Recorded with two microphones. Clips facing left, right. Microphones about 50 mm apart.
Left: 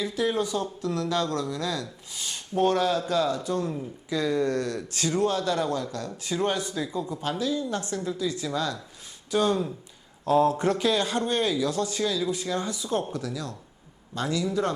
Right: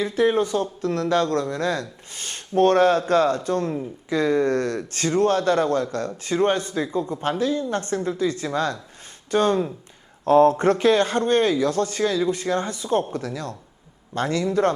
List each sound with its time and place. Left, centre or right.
0.2 s a man's voice: right